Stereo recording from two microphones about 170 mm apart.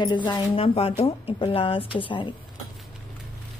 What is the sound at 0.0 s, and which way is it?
A woman's voice, 25° left (ahead or behind).